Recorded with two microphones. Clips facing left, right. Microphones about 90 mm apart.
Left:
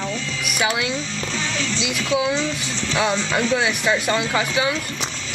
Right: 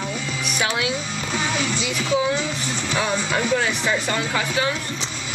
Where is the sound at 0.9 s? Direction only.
15° right (ahead or behind).